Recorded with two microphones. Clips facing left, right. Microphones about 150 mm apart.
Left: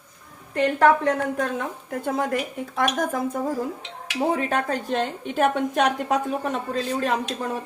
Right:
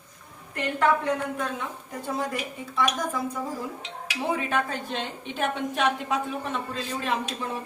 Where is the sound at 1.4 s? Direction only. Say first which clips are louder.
Left 5 dB; 50° left (ahead or behind).